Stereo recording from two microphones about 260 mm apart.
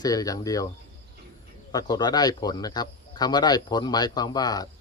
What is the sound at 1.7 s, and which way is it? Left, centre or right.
Speech, centre.